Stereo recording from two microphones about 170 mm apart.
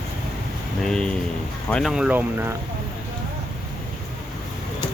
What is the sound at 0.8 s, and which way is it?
Speech, 5° left (ahead or behind).